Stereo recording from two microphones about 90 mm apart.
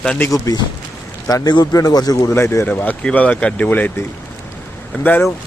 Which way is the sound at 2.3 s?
30° left (ahead or behind).